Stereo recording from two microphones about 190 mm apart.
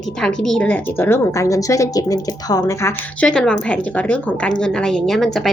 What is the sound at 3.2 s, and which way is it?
Speech, 5° left (ahead or behind).